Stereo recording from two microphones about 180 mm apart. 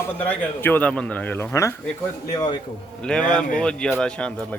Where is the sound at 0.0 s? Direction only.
10° left (ahead or behind).